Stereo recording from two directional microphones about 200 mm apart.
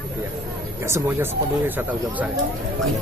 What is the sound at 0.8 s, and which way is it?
Speech, 15° right (ahead or behind).